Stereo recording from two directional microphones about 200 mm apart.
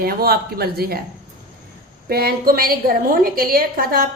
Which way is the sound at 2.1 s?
50° right (ahead or behind).